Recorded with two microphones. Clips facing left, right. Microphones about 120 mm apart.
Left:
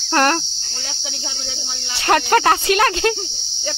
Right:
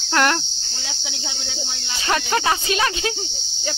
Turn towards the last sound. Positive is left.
turn(degrees=60)  # may be behind; listen again after turning